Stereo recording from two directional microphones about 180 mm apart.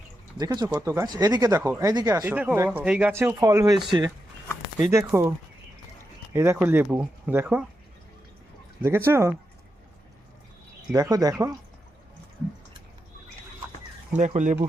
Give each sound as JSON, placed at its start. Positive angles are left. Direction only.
{"t": 0.3, "sound": "speech", "side_deg": -20}
{"t": 4.9, "sound": "speech", "side_deg": -15}
{"t": 6.3, "sound": "speech", "side_deg": -15}
{"t": 8.8, "sound": "speech", "side_deg": -15}
{"t": 10.9, "sound": "speech", "side_deg": -20}
{"t": 14.1, "sound": "speech", "side_deg": -40}